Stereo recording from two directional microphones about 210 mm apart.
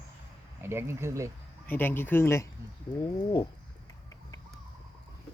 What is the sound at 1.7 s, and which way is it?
Speech, 10° left (ahead or behind).